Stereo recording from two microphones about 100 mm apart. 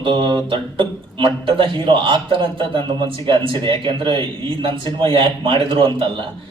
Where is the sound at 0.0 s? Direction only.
50° right (ahead or behind).